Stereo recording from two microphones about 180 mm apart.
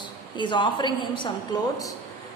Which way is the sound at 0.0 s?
25° left (ahead or behind).